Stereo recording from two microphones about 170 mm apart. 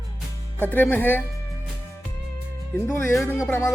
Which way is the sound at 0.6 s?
10° left (ahead or behind).